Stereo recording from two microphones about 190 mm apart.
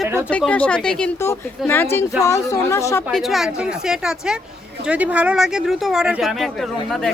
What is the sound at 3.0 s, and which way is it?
Speech, centre (ahead or behind).